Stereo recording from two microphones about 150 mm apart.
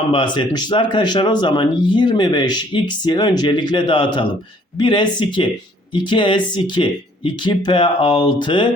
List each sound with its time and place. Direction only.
0.1 s speech: 30° left (ahead or behind)